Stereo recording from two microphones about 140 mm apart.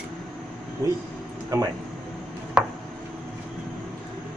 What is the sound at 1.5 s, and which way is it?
Speech, 25° right (ahead or behind).